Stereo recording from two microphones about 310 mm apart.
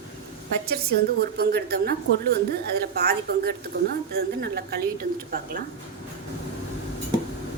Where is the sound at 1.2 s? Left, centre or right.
Right.